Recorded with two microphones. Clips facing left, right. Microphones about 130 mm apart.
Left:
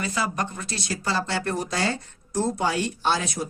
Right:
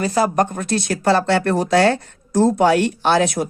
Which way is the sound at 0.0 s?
40° right (ahead or behind).